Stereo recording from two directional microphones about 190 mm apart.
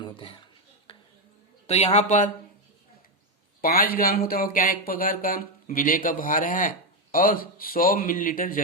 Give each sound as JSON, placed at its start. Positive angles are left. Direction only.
{"t": 0.0, "sound": "a sound", "side_deg": 30}
{"t": 1.6, "sound": "a man's voice", "side_deg": 35}
{"t": 3.6, "sound": "speech", "side_deg": 50}